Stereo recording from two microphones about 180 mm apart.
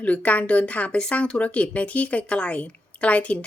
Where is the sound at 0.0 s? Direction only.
10° left (ahead or behind).